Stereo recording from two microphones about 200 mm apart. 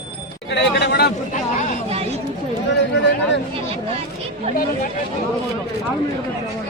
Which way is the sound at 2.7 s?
60° left (ahead or behind).